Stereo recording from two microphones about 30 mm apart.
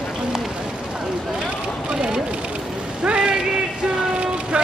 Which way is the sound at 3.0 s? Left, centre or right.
Right.